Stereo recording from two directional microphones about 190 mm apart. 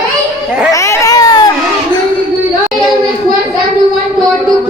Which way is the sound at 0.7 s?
15° left (ahead or behind).